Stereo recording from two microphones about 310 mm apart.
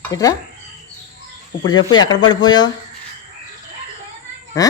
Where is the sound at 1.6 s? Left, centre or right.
Centre.